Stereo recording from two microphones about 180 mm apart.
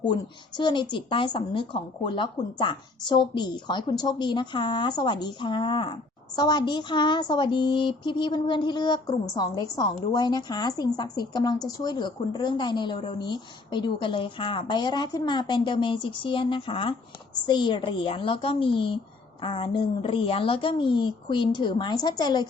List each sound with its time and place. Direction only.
0.0 s speech: 25° left (ahead or behind)